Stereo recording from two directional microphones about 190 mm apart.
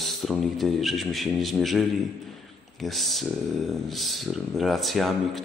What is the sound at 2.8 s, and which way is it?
A man's voice, centre (ahead or behind).